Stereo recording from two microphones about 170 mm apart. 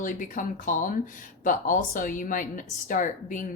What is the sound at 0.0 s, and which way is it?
A woman's voice, 50° left (ahead or behind).